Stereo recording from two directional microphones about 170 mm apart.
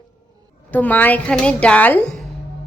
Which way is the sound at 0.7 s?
10° left (ahead or behind).